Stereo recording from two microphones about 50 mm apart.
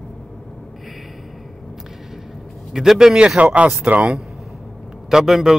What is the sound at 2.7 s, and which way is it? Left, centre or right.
Speech, centre.